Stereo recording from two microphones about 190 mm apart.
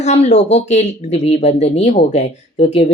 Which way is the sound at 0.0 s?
35° left (ahead or behind).